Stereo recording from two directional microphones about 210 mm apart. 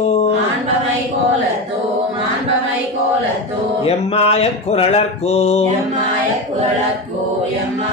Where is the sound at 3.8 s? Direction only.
30° left (ahead or behind).